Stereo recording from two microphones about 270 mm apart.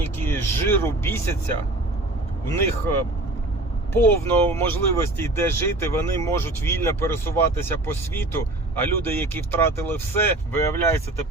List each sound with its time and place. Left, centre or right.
0.0 s speech: centre
2.5 s speech: centre